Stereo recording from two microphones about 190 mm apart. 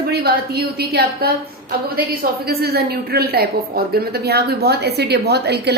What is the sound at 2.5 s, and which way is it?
A woman's voice, 55° right (ahead or behind).